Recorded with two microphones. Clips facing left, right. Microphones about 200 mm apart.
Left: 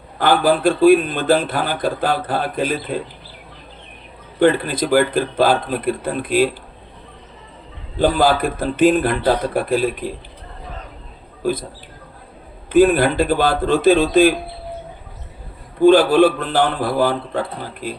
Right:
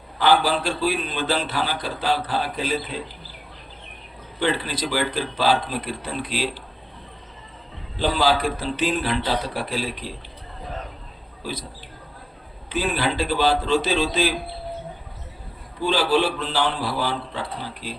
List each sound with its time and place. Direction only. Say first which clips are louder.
0.2 s a man's voice: left 4 dB; 55° left (ahead or behind)
4.4 s a man's voice: left 9 dB; 50° left (ahead or behind)
7.9 s a man's voice: left 5 dB; 55° left (ahead or behind)
11.4 s a man's voice: left 11 dB; 55° left (ahead or behind)
12.7 s a man's voice: left 11 dB; 55° left (ahead or behind)
15.8 s a man's voice: left 10 dB; 55° left (ahead or behind)